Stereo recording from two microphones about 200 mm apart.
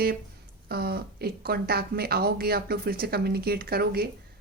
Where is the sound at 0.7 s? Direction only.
50° right (ahead or behind).